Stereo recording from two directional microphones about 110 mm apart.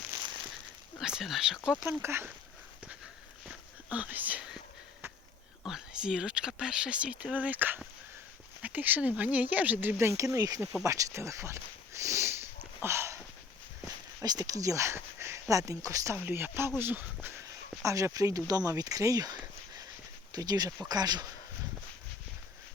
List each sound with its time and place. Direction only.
0.9 s speech: 5° right (ahead or behind)
1.8 s speech: 20° right (ahead or behind)
3.4 s whispering: 10° right (ahead or behind)
5.6 s speech: 5° right (ahead or behind); by 10.8 s 30° right (ahead or behind)
10.8 s a sound: 30° right (ahead or behind)
13.8 s speech: 30° right (ahead or behind)
16.2 s speech: 20° right (ahead or behind)
17.8 s speech: 30° right (ahead or behind)